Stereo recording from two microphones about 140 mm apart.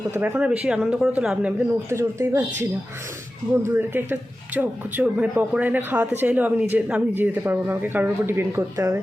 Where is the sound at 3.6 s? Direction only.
15° right (ahead or behind).